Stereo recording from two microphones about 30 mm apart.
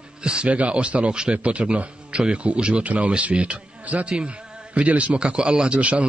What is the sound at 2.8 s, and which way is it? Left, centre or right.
A man's voice, right.